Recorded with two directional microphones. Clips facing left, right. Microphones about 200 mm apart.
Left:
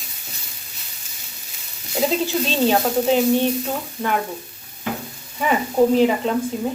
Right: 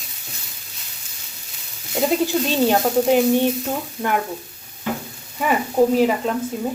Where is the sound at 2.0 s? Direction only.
15° right (ahead or behind).